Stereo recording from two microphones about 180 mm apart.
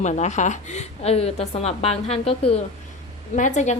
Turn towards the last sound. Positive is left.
turn(degrees=40)  # may be behind; listen again after turning